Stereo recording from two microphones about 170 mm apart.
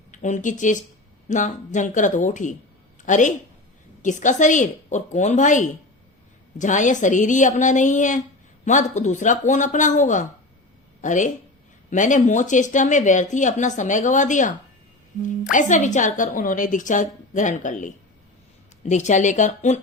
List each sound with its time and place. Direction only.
0.1 s speech: 45° left (ahead or behind)
15.5 s speech: 45° left (ahead or behind)